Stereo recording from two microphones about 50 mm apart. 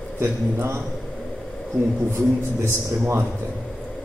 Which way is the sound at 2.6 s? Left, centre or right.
Right.